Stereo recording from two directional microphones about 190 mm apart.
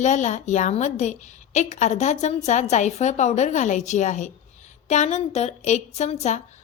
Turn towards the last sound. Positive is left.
turn(degrees=35)  # may be behind; listen again after turning